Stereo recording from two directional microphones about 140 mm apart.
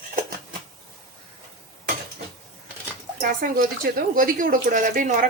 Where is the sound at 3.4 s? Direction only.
85° right.